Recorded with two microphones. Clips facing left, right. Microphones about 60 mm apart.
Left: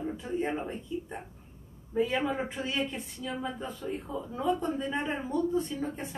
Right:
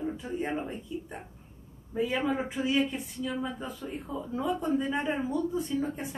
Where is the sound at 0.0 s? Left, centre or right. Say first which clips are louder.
Left 1 dB; centre.